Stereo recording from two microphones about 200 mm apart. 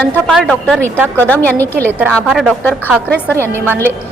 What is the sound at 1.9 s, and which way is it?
A woman's voice, 10° right (ahead or behind).